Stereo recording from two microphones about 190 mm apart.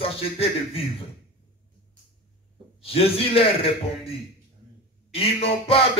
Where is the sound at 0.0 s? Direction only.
30° left (ahead or behind).